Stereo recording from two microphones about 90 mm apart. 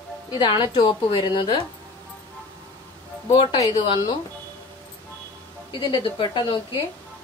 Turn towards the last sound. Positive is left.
turn(degrees=65)  # may be behind; listen again after turning